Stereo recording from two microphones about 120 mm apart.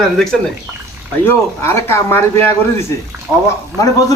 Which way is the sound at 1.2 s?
20° left (ahead or behind).